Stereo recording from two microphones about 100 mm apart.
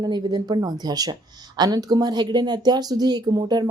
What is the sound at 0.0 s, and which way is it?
Speech, 40° right (ahead or behind).